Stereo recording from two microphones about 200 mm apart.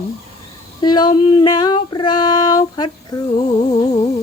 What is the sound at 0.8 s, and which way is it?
Female singing, 20° left (ahead or behind).